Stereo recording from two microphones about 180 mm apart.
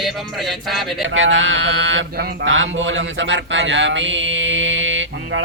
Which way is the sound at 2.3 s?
80° right.